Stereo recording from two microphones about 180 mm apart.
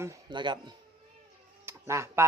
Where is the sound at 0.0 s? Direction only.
20° right (ahead or behind).